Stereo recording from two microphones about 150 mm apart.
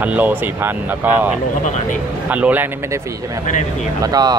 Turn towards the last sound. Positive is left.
turn(degrees=-25)  # may be behind; listen again after turning